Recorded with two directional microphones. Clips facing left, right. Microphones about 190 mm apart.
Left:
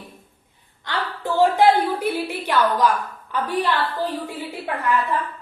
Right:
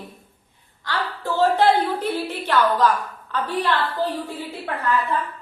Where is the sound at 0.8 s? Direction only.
20° left (ahead or behind).